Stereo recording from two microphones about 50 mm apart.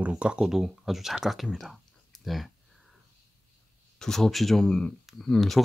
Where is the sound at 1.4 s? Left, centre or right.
Centre.